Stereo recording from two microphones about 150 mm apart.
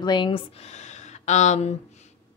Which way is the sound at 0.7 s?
50° left (ahead or behind).